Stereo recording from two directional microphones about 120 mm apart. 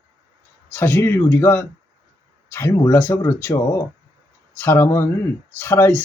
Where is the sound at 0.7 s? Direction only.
20° left (ahead or behind).